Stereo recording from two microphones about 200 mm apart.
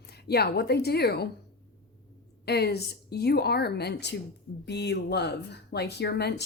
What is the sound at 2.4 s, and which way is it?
Speech, 55° left (ahead or behind).